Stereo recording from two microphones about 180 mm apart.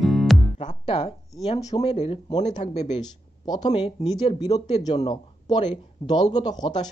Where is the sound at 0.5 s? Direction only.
35° left (ahead or behind).